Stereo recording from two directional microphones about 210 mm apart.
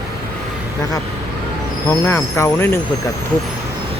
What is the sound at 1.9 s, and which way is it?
Speech, 10° left (ahead or behind).